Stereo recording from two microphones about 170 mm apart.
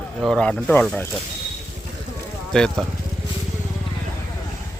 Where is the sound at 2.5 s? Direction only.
5° left (ahead or behind).